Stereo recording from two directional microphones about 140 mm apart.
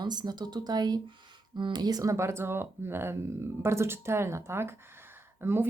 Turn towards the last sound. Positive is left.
turn(degrees=-15)  # may be behind; listen again after turning